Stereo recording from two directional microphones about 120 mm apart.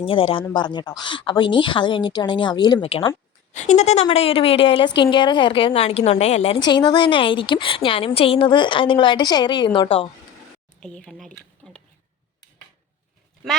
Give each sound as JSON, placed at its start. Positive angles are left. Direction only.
{"t": 0.0, "sound": "a woman's voice", "side_deg": 50}
{"t": 2.8, "sound": "a woman's voice", "side_deg": 50}
{"t": 3.5, "sound": "speech", "side_deg": 75}
{"t": 4.1, "sound": "a woman's voice", "side_deg": 55}
{"t": 6.6, "sound": "a woman's voice", "side_deg": 40}
{"t": 10.8, "sound": "speech", "side_deg": 5}